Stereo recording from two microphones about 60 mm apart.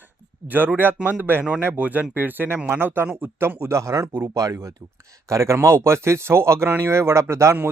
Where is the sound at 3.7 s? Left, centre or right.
Right.